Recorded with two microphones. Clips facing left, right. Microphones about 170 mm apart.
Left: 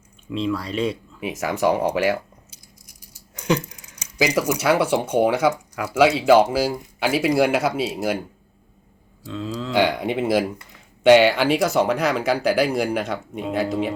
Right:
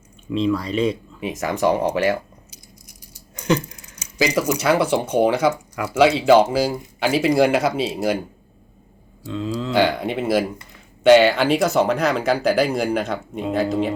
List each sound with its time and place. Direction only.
0.3 s speech: 5° left (ahead or behind)
3.3 s a sound: 10° left (ahead or behind)
4.2 s speech: 10° left (ahead or behind)
9.2 s speech: centre (ahead or behind)
9.7 s speech: 15° left (ahead or behind)